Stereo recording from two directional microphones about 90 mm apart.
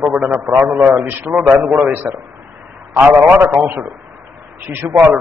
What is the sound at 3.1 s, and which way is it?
A man's voice, 25° right (ahead or behind).